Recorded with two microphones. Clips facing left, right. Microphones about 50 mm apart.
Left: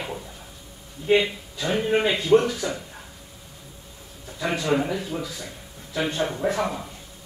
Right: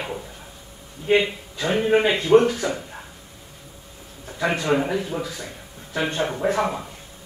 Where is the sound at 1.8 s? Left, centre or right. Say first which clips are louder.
Right 3 dB; right.